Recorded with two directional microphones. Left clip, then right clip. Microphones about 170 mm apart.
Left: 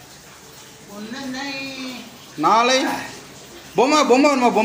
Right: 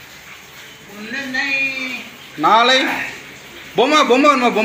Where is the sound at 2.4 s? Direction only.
10° left (ahead or behind).